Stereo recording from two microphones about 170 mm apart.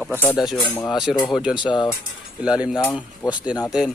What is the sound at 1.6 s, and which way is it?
Speech, 25° left (ahead or behind).